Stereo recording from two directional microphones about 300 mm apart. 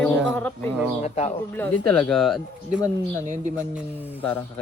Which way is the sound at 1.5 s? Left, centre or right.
Centre.